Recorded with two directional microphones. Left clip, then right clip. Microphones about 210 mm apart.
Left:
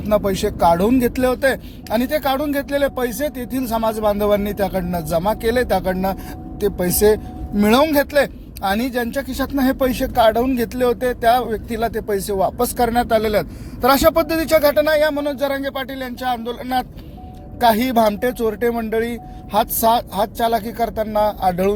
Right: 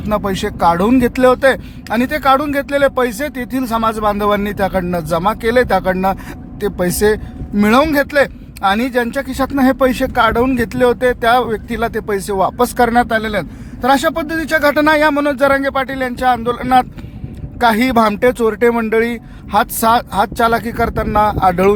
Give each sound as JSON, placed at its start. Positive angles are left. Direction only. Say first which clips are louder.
{"t": 0.1, "sound": "speech", "louder": "even", "side_deg": -15}
{"t": 14.6, "sound": "speech", "louder": "right 3 dB", "side_deg": -25}